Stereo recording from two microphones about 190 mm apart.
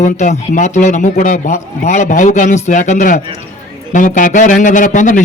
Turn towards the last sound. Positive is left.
turn(degrees=40)  # may be behind; listen again after turning